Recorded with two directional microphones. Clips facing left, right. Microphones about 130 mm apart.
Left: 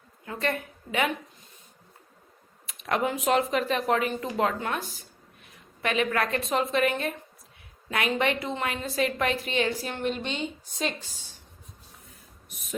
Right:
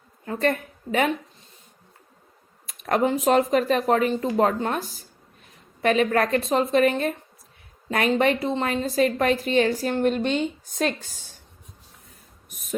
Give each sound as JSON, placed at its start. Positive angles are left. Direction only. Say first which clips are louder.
{"t": 0.3, "sound": "a woman's voice", "louder": "right 6 dB", "side_deg": -40}
{"t": 2.6, "sound": "a woman's voice", "louder": "right 5 dB", "side_deg": -40}
{"t": 12.5, "sound": "speech", "louder": "right 1 dB", "side_deg": -45}